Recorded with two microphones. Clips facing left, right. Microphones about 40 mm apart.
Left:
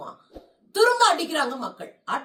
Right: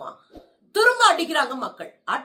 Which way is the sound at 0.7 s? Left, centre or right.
Right.